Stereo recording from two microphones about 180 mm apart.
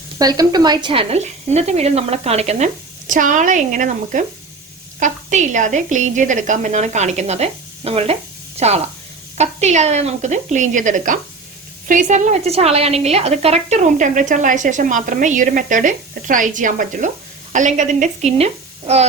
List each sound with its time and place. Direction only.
0.2 s a woman's voice: 20° right (ahead or behind); by 19.0 s 35° right (ahead or behind)